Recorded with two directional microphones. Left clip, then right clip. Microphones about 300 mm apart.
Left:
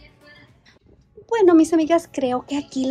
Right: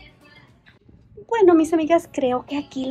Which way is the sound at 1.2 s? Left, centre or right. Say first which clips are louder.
Left 1 dB; centre.